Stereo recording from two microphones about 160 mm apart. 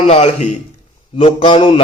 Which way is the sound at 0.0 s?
40° left (ahead or behind).